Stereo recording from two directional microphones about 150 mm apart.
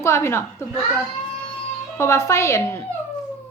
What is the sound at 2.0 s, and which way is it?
Speech, 20° left (ahead or behind).